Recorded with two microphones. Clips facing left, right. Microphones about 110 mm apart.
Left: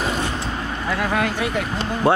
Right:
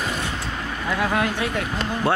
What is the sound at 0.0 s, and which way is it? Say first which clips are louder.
Vehicle: left 4 dB; 25° left (ahead or behind).